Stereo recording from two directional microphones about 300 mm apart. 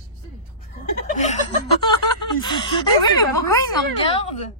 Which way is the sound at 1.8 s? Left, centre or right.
Centre.